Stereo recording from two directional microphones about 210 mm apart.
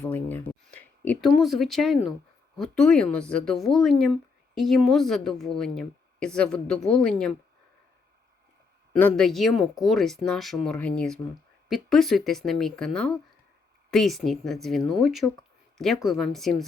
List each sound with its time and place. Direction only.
0.0 s speech: 10° left (ahead or behind)
8.9 s speech: 5° left (ahead or behind)